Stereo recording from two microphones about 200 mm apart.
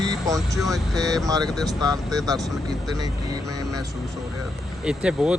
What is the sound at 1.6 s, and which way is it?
Speech, 20° right (ahead or behind).